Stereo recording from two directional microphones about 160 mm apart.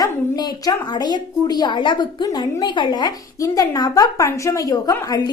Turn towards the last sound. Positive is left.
turn(degrees=25)  # may be behind; listen again after turning